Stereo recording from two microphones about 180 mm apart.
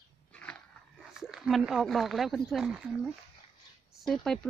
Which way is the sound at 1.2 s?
Centre (ahead or behind).